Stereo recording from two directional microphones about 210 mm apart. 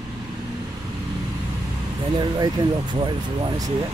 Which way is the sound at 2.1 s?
20° right (ahead or behind).